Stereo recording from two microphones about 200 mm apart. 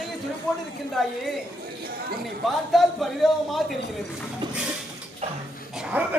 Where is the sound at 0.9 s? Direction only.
Centre (ahead or behind).